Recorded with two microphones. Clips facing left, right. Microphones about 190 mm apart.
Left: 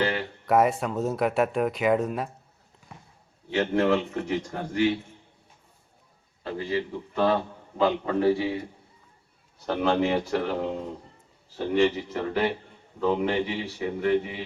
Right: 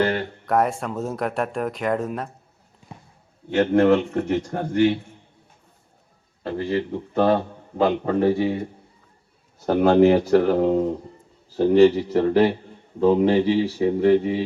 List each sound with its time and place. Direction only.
0.4 s speech: 5° left (ahead or behind)
3.5 s a man's voice: 50° right (ahead or behind)
6.4 s a man's voice: 45° right (ahead or behind)
9.6 s a man's voice: 40° right (ahead or behind)